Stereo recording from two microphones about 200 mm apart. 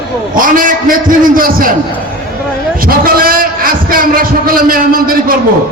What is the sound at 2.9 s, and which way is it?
A man's voice, 45° right (ahead or behind).